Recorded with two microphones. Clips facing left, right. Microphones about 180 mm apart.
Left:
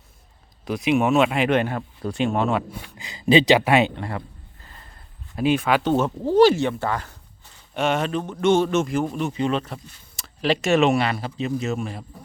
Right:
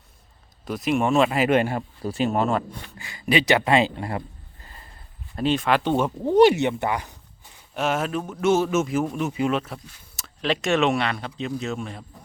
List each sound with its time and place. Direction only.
0.6 s a man's voice: centre (ahead or behind)
3.0 s speech: 20° left (ahead or behind)
3.6 s a man's voice: 5° left (ahead or behind)
3.9 s speech: 15° right (ahead or behind)
5.4 s a man's voice: 5° left (ahead or behind)
6.3 s speech: 20° right (ahead or behind)
7.7 s a man's voice: centre (ahead or behind)